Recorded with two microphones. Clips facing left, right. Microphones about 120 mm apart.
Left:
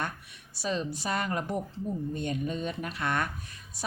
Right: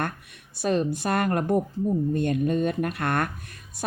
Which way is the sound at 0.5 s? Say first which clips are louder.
Right 8 dB; 55° right (ahead or behind).